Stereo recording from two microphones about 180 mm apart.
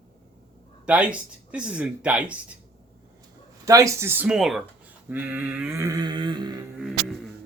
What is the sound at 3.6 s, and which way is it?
Speech, 15° right (ahead or behind).